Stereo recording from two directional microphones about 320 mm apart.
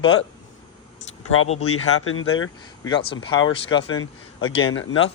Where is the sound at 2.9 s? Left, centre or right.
Centre.